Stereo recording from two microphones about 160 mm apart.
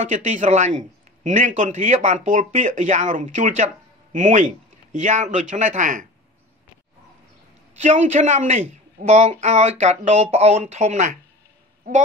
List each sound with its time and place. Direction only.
0.0 s speech: 50° right (ahead or behind)
7.8 s speech: 45° right (ahead or behind)